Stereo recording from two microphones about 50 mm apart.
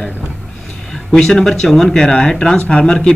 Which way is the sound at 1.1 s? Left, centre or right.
Centre.